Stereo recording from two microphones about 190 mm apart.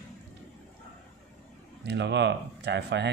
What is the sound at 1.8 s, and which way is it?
Speech, 65° right (ahead or behind).